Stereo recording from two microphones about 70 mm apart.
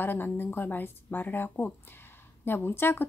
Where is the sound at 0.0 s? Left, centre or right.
Left.